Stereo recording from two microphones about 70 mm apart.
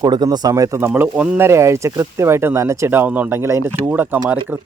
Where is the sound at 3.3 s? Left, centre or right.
Right.